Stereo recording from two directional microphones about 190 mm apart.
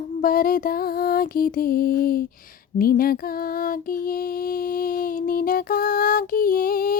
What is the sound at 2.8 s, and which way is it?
Music, 50° left (ahead or behind).